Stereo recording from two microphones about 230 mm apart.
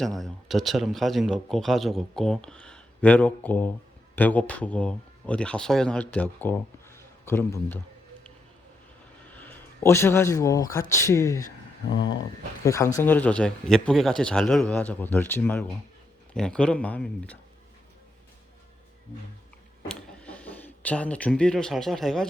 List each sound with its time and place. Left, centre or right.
0.2 s a man's voice: centre
9.4 s speech: centre
11.9 s speech: left
12.6 s a man's voice: centre
19.9 s speech: centre